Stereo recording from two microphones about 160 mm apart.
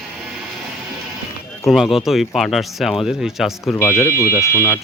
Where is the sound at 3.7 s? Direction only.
15° left (ahead or behind).